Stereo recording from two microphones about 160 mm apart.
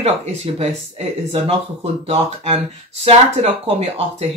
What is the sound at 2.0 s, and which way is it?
Speech, 35° right (ahead or behind).